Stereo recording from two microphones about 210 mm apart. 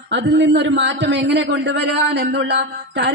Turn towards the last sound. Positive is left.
turn(degrees=-55)  # may be behind; listen again after turning